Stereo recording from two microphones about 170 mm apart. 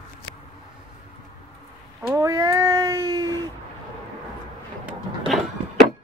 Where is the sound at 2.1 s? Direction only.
20° right (ahead or behind).